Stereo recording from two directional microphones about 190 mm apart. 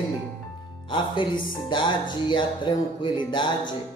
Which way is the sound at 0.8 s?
25° left (ahead or behind).